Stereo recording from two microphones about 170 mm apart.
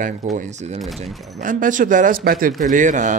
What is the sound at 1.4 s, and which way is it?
Speech, 50° right (ahead or behind).